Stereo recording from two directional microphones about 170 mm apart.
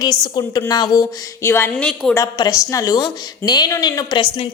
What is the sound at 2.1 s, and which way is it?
Speech, 20° left (ahead or behind).